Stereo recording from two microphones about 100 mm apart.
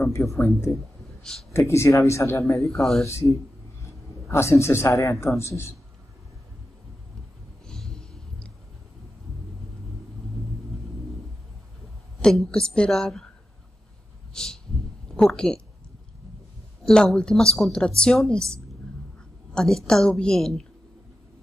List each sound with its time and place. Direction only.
0.0 s speech: 30° left (ahead or behind)
1.5 s speech: 25° left (ahead or behind)
2.7 s a woman's voice: 5° left (ahead or behind)
3.1 s speech: 30° left (ahead or behind)
7.6 s a sound: 5° left (ahead or behind)
12.2 s speech: 5° left (ahead or behind)
14.3 s a sound: 5° left (ahead or behind)
15.1 s a woman's voice: 5° left (ahead or behind)
16.8 s speech: 5° left (ahead or behind)
19.5 s a woman's voice: 5° left (ahead or behind)